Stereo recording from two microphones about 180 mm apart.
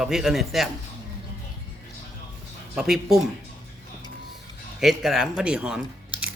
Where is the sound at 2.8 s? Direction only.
Centre (ahead or behind).